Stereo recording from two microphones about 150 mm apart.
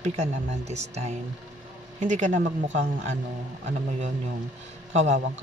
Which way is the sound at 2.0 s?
55° right (ahead or behind).